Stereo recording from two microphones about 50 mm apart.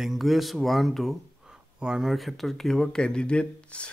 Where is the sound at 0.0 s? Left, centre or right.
Centre.